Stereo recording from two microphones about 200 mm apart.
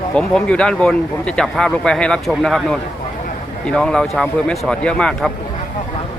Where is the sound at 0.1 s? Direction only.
5° left (ahead or behind).